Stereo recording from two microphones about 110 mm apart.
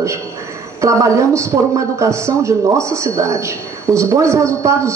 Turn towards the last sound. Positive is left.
turn(degrees=-25)  # may be behind; listen again after turning